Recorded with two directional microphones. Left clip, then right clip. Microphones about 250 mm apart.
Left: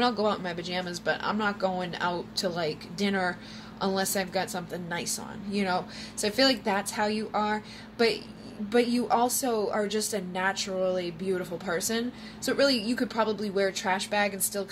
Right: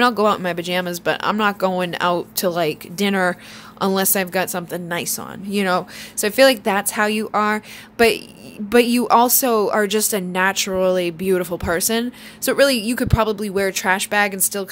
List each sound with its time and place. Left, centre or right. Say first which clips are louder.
0.0 s speech: right 10 dB; right
8.6 s speech: right 10 dB; right